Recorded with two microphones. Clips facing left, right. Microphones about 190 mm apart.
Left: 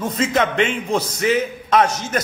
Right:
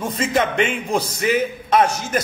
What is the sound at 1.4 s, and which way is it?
Speech, 10° right (ahead or behind).